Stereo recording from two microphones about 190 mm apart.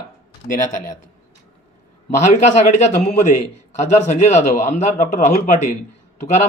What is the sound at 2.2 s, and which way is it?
A man's voice, 40° left (ahead or behind).